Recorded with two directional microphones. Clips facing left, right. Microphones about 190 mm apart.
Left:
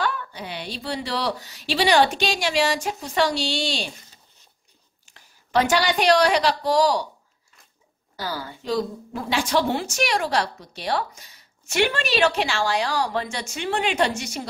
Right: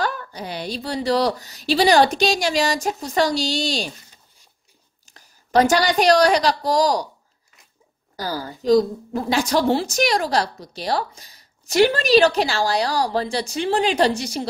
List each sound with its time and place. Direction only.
0.0 s a woman's voice: 40° right (ahead or behind)
5.0 s a woman's voice: 40° right (ahead or behind)
8.2 s a woman's voice: 40° right (ahead or behind)